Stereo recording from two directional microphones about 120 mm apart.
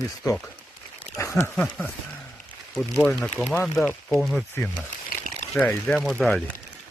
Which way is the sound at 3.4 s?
5° left (ahead or behind).